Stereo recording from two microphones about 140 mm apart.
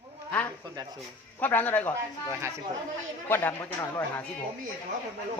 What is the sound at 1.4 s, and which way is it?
Speech, 15° left (ahead or behind).